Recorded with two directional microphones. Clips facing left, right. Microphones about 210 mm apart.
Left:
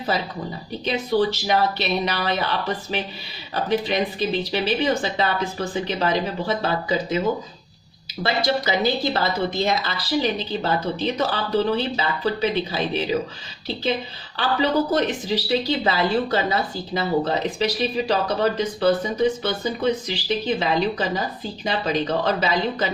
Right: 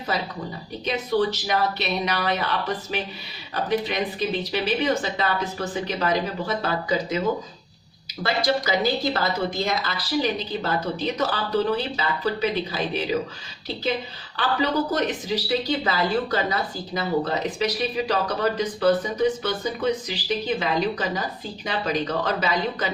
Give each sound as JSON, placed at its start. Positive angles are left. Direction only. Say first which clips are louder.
{"t": 0.9, "sound": "speech", "louder": "left 2 dB", "side_deg": 30}
{"t": 3.5, "sound": "speech", "louder": "left 2 dB", "side_deg": 30}
{"t": 8.2, "sound": "speech", "louder": "left 1 dB", "side_deg": 25}
{"t": 14.3, "sound": "speech", "louder": "left 2 dB", "side_deg": 30}